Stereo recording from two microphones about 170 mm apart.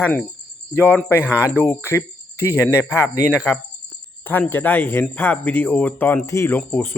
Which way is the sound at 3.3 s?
5° right (ahead or behind).